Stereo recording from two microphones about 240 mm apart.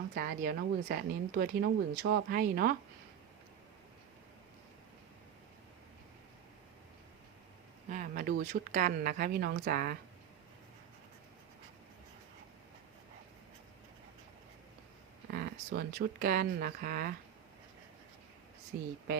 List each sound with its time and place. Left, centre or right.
0.1 s speech: right
7.9 s speech: right
15.3 s speech: right